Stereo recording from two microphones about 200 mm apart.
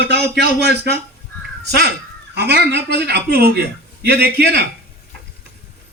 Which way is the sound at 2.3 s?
55° right (ahead or behind).